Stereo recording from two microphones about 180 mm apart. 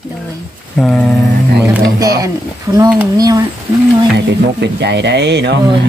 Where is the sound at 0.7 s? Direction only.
5° left (ahead or behind).